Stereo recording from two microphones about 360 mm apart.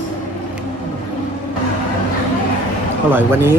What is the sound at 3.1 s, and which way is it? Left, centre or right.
Speech, centre.